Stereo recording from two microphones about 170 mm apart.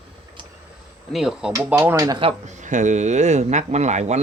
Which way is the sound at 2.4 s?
45° right (ahead or behind).